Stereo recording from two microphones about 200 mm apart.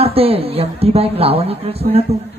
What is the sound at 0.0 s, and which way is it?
A woman's voice, 30° right (ahead or behind).